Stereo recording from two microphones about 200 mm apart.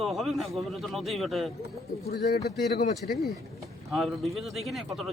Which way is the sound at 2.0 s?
50° left (ahead or behind).